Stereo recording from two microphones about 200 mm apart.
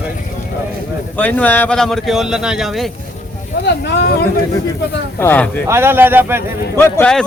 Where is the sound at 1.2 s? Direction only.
10° left (ahead or behind).